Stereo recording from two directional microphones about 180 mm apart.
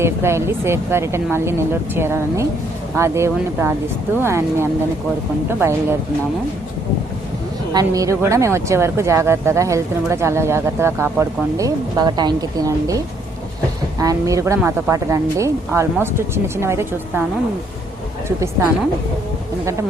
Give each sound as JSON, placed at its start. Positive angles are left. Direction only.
{"t": 0.0, "sound": "speech", "side_deg": -15}
{"t": 7.7, "sound": "speech", "side_deg": -20}
{"t": 14.0, "sound": "speech", "side_deg": -20}
{"t": 18.3, "sound": "speech", "side_deg": -15}